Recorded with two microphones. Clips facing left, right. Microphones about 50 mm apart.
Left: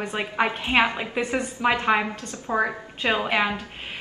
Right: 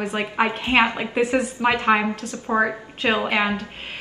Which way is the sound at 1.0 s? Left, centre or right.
Centre.